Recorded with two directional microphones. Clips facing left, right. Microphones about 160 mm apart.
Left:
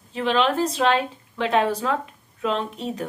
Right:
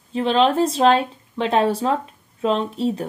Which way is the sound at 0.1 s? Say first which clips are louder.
Right 4 dB; 30° right (ahead or behind).